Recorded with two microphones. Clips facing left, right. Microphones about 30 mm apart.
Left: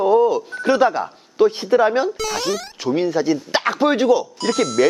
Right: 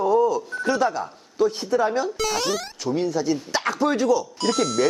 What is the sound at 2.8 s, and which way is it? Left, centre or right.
Speech, left.